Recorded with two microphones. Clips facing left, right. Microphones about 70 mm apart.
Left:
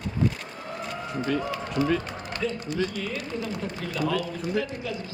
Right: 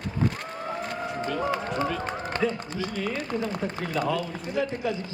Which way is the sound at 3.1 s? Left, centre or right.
Right.